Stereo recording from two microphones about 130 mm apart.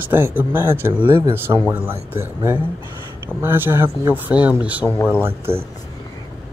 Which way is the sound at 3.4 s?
15° right (ahead or behind).